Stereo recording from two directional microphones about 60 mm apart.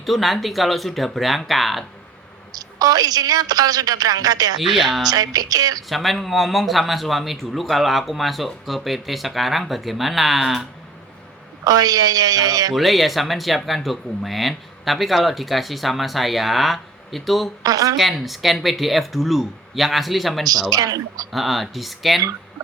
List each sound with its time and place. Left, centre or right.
0.0 s speech: centre
2.5 s a woman's voice: right
4.7 s speech: centre
5.0 s a woman's voice: right
5.9 s speech: centre
11.6 s a woman's voice: right
12.7 s speech: centre
17.6 s speech: right
18.3 s speech: centre
20.5 s a woman's voice: right
21.3 s speech: centre